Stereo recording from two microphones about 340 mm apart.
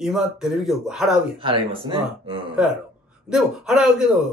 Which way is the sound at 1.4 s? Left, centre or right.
Centre.